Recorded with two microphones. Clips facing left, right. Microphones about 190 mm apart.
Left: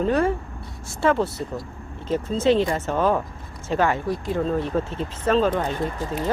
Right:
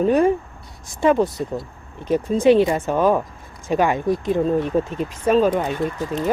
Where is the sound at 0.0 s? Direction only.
15° right (ahead or behind).